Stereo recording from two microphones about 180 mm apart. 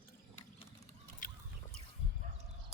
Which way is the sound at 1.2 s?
45° left (ahead or behind).